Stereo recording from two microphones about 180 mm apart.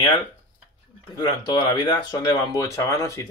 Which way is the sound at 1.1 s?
20° left (ahead or behind).